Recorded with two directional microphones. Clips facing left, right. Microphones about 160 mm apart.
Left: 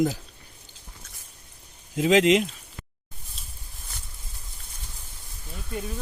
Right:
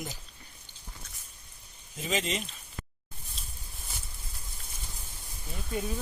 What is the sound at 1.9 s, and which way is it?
Speech, 90° left.